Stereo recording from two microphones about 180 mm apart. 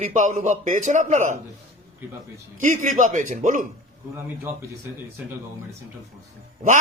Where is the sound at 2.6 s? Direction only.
45° right (ahead or behind).